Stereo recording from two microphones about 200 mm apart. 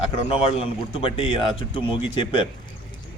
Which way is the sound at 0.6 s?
25° left (ahead or behind).